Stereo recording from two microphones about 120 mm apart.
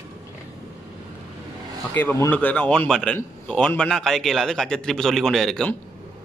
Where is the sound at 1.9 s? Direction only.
20° left (ahead or behind); by 5.7 s centre (ahead or behind).